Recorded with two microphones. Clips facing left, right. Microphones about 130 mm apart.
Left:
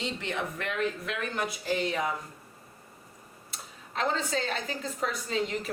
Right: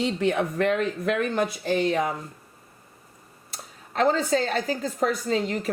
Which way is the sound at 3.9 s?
40° right (ahead or behind).